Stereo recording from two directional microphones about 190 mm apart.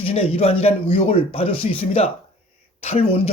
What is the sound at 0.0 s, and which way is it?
Speech, 30° left (ahead or behind).